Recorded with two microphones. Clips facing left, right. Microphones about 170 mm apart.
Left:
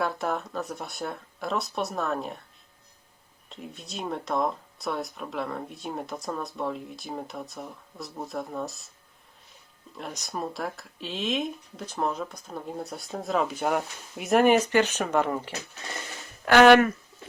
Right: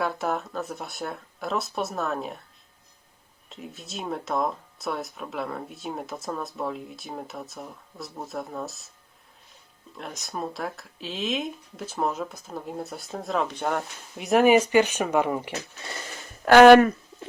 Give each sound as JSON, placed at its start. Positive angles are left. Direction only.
{"t": 0.0, "sound": "speech", "side_deg": 0}
{"t": 3.5, "sound": "speech", "side_deg": 0}
{"t": 10.0, "sound": "speech", "side_deg": 0}
{"t": 16.5, "sound": "speech", "side_deg": -40}